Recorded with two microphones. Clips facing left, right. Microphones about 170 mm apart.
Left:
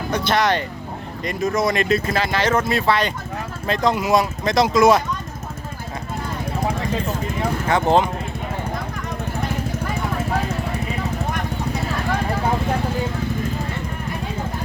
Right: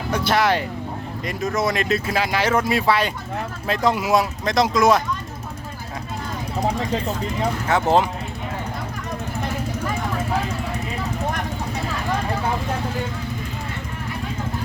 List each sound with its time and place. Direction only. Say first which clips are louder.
0.1 s speech: even; 5° right (ahead or behind)
7.7 s speech: left 1 dB; 5° right (ahead or behind)